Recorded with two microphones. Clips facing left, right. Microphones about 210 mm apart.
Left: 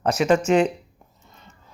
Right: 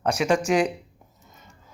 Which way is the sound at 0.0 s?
Centre (ahead or behind).